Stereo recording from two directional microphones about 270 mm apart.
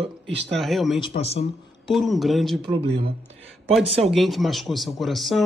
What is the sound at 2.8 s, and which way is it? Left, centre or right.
Speech, right.